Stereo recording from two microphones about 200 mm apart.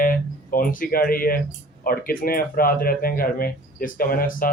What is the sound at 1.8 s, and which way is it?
Speech, 45° left (ahead or behind).